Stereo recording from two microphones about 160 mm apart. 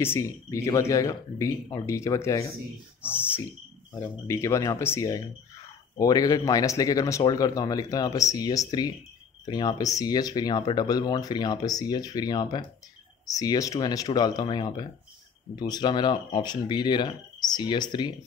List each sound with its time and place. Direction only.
0.0 s speech: 15° left (ahead or behind)